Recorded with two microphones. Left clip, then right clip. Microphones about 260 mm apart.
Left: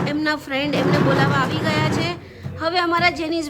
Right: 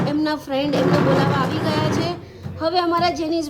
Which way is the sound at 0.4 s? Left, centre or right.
Centre.